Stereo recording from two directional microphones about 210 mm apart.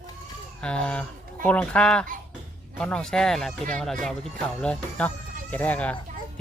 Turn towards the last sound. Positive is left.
turn(degrees=5)  # may be behind; listen again after turning